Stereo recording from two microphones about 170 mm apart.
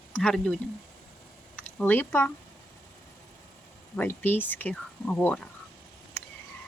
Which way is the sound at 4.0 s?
10° left (ahead or behind).